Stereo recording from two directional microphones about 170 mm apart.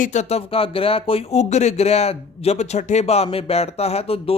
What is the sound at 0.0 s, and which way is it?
Speech, 45° left (ahead or behind).